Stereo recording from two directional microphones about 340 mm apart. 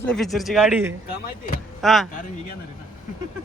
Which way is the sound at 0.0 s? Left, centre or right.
Centre.